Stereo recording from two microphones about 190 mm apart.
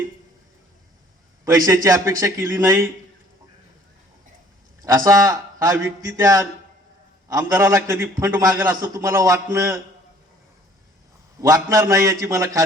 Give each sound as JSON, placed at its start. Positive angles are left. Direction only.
{"t": 1.5, "sound": "a man's voice", "side_deg": -15}
{"t": 4.9, "sound": "a man's voice", "side_deg": -15}
{"t": 11.3, "sound": "a man's voice", "side_deg": -15}